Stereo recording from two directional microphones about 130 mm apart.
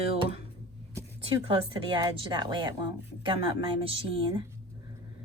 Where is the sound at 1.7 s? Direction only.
35° right (ahead or behind).